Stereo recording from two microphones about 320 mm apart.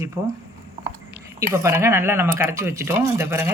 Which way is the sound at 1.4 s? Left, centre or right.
Centre.